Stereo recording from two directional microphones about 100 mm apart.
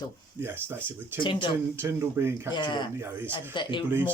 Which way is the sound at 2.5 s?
50° left (ahead or behind).